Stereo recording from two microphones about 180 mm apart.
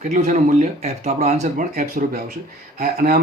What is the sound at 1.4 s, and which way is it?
A man's voice, 50° right (ahead or behind).